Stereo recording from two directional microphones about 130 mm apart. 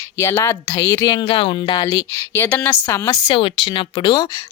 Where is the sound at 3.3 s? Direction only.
40° left (ahead or behind).